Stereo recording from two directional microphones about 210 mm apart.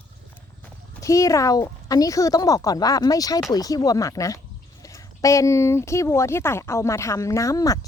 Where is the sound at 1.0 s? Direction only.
15° left (ahead or behind).